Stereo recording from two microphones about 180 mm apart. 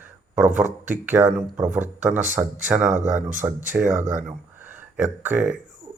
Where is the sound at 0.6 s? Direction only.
10° right (ahead or behind).